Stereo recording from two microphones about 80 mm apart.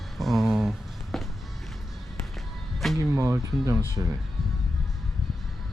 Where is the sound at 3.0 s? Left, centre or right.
Right.